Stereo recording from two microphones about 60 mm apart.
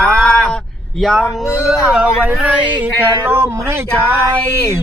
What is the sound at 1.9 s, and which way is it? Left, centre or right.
Speech, right.